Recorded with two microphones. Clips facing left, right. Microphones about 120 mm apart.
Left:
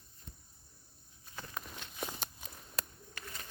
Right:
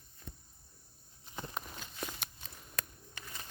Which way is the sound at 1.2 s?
20° right (ahead or behind).